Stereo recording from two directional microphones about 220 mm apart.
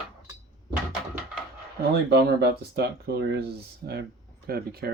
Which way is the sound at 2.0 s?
45° right (ahead or behind).